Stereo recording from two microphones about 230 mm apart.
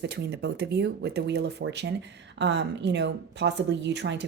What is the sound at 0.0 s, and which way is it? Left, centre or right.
Speech, right.